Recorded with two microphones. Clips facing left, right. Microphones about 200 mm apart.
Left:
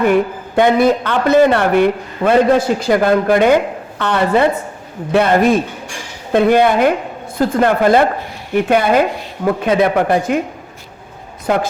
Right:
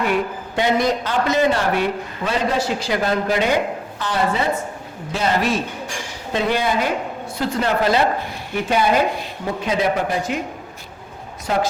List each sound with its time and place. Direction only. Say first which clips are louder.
0.0 s a man's voice: left 7 dB; 50° left (ahead or behind)
11.5 s a man's voice: left 5 dB; 55° left (ahead or behind)